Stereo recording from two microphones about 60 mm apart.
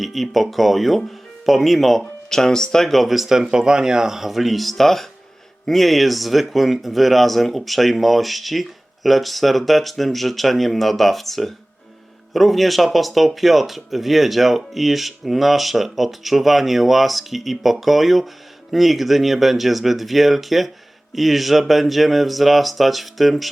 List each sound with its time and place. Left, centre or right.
0.0 s speech: centre